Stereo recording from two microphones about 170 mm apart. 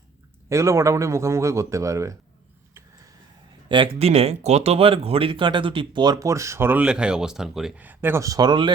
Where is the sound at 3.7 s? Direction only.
30° right (ahead or behind).